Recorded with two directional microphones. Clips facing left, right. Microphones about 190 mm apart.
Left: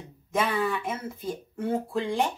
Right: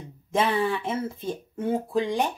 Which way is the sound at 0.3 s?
30° right (ahead or behind).